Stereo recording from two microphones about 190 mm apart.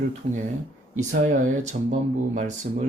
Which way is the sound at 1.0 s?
40° right (ahead or behind).